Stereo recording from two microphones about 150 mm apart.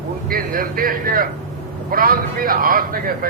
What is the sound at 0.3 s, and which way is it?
A man's voice, 70° right (ahead or behind).